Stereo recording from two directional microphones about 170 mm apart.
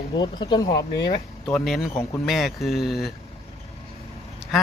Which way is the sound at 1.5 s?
Centre (ahead or behind).